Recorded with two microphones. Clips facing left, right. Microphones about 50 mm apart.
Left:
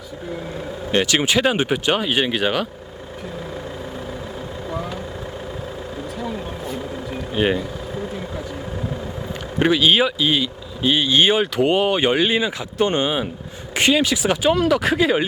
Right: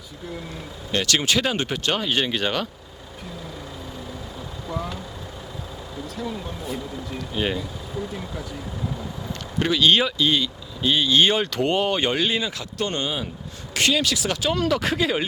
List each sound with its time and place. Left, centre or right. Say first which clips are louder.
0.9 s speech: left 4 dB; left
4.7 s vehicle: left 1 dB; centre
6.1 s speech: left 1 dB; centre
9.6 s speech: left 5 dB; left
9.8 s speech: left 2 dB; centre